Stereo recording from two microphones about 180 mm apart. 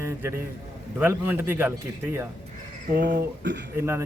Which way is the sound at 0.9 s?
10° right (ahead or behind).